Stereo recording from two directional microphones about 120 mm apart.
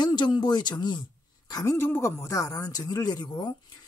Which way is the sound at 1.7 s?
20° left (ahead or behind).